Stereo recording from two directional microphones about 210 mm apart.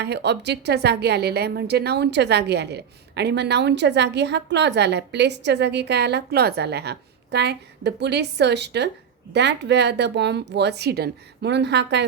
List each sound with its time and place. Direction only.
0.0 s a woman's voice: 55° right (ahead or behind)